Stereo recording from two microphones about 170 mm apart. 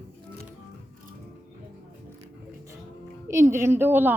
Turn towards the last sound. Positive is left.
turn(degrees=-10)  # may be behind; listen again after turning